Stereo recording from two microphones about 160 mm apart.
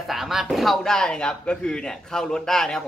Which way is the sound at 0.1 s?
Centre (ahead or behind).